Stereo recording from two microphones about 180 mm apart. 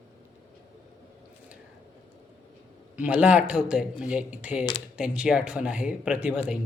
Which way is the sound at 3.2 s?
5° right (ahead or behind).